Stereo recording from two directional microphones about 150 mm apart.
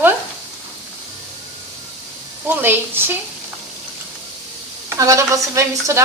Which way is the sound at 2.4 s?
15° right (ahead or behind).